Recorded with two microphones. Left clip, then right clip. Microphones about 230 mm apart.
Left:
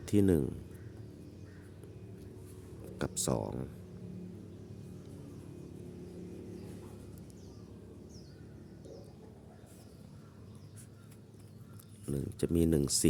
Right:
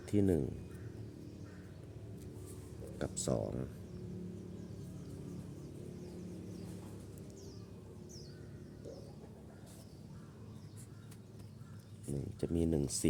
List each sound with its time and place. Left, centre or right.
0.0 s speech: left
3.0 s speech: left
12.0 s speech: left